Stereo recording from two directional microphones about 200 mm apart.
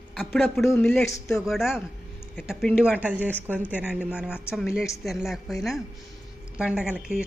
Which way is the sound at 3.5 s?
10° left (ahead or behind).